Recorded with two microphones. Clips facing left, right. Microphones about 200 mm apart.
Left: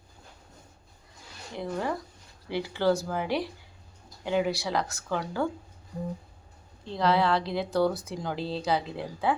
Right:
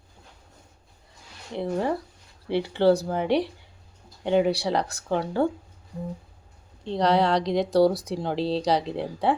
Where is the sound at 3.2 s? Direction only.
70° right (ahead or behind).